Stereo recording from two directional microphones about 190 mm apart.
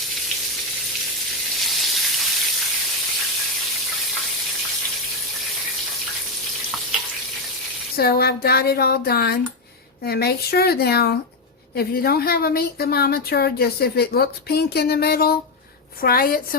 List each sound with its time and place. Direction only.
1.6 s frying: centre (ahead or behind)
7.9 s a woman's voice: 55° left (ahead or behind)